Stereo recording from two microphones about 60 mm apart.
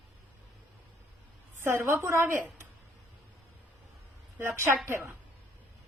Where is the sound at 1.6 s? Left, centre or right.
Right.